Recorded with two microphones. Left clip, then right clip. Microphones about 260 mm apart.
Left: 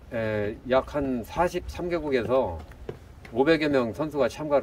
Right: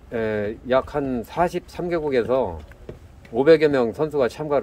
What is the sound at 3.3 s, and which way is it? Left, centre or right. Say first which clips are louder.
Speech: right 7 dB; right.